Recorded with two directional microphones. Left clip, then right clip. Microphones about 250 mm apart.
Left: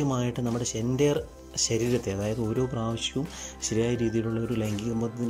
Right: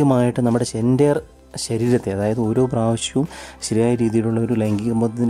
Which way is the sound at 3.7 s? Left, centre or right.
Right.